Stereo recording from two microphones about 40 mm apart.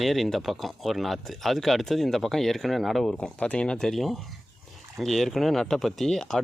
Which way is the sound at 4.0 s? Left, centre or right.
Centre.